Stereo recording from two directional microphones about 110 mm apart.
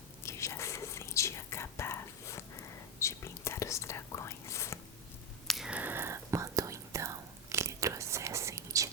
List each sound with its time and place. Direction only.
0.2 s whispering: 25° left (ahead or behind)
5.5 s whispering: 5° right (ahead or behind); by 8.9 s 30° right (ahead or behind)